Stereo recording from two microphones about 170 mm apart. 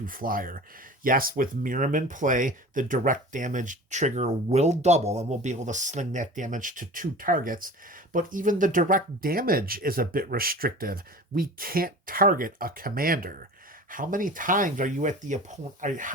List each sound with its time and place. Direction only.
0.0 s speech: 55° right (ahead or behind)